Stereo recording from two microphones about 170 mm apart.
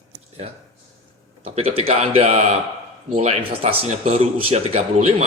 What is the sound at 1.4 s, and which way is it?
Speech, 35° right (ahead or behind).